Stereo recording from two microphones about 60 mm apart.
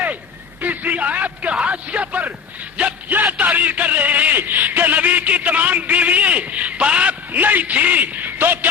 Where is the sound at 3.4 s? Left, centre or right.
Right.